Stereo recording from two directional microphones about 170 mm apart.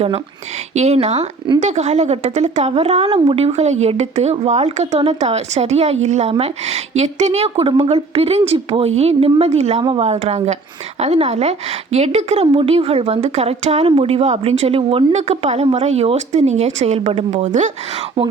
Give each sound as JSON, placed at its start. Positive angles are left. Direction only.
{"t": 0.7, "sound": "a woman's voice", "side_deg": -40}